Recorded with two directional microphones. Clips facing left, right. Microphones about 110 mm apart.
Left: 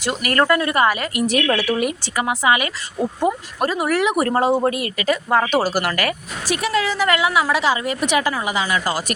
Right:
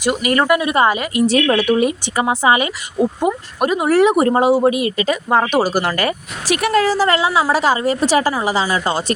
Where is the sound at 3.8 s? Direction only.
30° right (ahead or behind).